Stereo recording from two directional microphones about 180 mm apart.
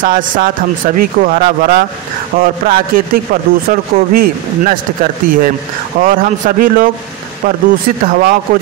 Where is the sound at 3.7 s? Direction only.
50° right (ahead or behind).